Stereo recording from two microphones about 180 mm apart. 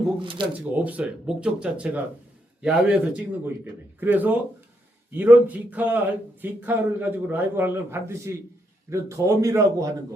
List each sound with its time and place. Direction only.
0.2 s speech: 25° right (ahead or behind)
0.9 s a man's voice: 5° right (ahead or behind)